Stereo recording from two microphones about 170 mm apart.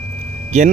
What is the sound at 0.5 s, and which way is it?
Speech, 40° right (ahead or behind).